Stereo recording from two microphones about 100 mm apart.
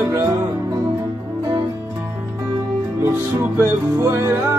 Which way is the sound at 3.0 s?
25° right (ahead or behind).